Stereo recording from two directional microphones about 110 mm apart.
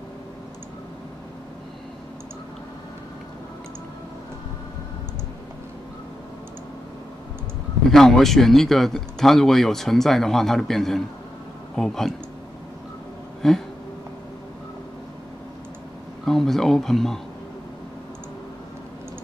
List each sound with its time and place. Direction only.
7.9 s speech: 5° left (ahead or behind)
13.4 s speech: 5° left (ahead or behind)
16.3 s speech: 5° left (ahead or behind)